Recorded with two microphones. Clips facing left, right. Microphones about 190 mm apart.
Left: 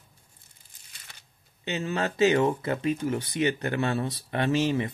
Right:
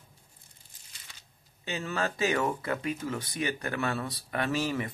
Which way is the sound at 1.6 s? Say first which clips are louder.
Left 3 dB; 25° left (ahead or behind).